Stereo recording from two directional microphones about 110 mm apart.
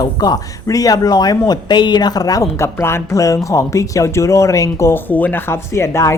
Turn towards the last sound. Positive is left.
turn(degrees=25)  # may be behind; listen again after turning